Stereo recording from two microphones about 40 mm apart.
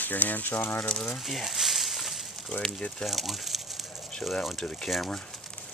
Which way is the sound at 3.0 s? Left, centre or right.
Centre.